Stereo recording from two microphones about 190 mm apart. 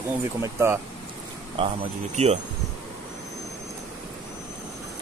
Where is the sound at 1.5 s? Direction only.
30° right (ahead or behind).